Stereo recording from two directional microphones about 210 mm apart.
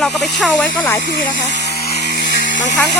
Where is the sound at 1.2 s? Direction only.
50° left (ahead or behind).